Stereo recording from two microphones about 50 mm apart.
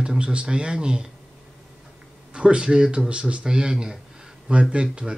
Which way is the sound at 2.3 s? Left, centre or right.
Centre.